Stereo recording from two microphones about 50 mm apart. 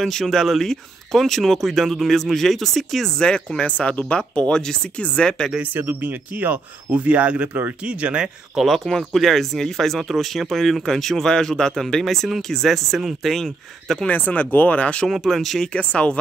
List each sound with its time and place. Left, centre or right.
0.0 s speech: centre
3.2 s speech: centre
5.6 s speech: right
8.5 s speech: centre
14.0 s speech: left
15.0 s speech: centre
15.7 s speech: left